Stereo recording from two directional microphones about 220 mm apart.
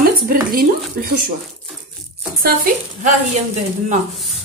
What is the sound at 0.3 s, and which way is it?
Stir, 40° right (ahead or behind).